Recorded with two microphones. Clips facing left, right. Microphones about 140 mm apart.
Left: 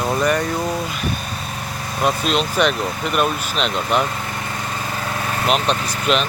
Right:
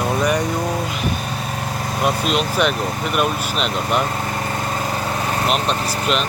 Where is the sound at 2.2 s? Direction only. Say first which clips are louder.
Even; 5° right (ahead or behind).